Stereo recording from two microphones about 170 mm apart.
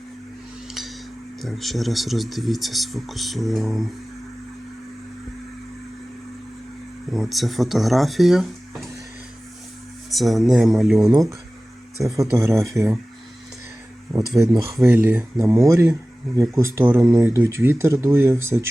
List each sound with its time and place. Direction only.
0.7 s a sound: centre (ahead or behind)
1.4 s speech: centre (ahead or behind)
7.1 s speech: centre (ahead or behind)
10.1 s speech: centre (ahead or behind)
11.1 s speech: 20° right (ahead or behind)
14.1 s speech: 20° right (ahead or behind)